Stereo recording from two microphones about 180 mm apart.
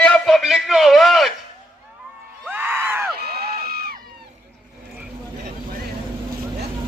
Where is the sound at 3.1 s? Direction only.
60° right (ahead or behind).